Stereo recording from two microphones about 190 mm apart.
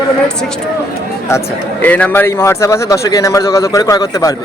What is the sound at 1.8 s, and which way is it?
A man's voice, 10° left (ahead or behind).